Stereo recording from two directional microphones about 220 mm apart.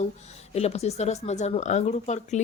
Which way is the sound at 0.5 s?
30° left (ahead or behind).